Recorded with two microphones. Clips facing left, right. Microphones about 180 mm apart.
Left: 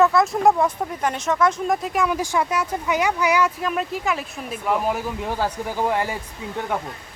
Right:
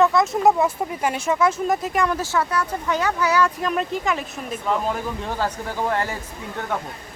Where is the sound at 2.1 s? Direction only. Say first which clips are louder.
Left 1 dB; 15° left (ahead or behind).